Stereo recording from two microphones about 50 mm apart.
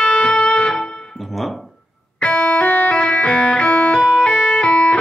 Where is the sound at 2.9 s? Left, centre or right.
Left.